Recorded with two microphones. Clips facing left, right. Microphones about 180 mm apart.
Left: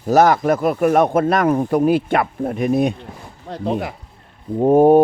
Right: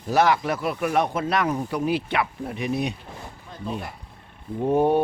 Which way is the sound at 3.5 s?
80° left.